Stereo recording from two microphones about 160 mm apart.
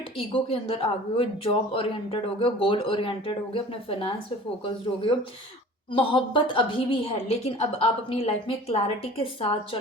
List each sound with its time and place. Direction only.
0.2 s speech: 35° left (ahead or behind)